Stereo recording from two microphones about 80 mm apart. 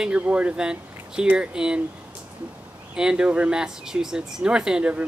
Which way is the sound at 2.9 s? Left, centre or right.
Centre.